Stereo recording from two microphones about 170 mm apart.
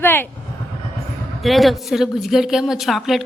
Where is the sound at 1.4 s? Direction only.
Centre (ahead or behind).